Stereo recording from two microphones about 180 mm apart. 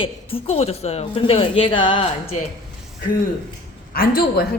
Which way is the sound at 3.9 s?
55° left (ahead or behind).